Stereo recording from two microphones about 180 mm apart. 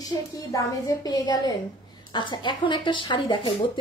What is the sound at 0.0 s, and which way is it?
Speech, 20° left (ahead or behind).